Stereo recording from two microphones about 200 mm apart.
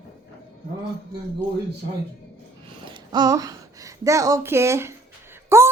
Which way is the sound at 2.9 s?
20° right (ahead or behind).